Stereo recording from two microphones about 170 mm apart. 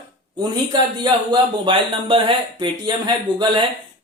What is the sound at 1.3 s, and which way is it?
Speech, 30° right (ahead or behind).